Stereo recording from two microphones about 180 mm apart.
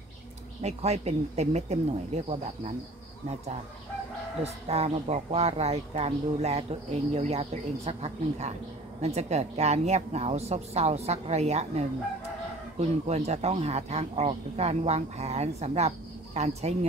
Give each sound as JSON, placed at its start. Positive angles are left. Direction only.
{"t": 0.6, "sound": "speech", "side_deg": -35}
{"t": 4.4, "sound": "speech", "side_deg": -35}